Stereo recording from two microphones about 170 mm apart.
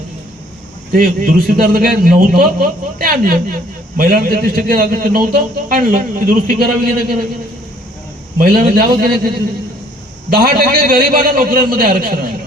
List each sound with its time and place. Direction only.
0.9 s a man's voice: 55° right (ahead or behind)
8.4 s a man's voice: 60° right (ahead or behind)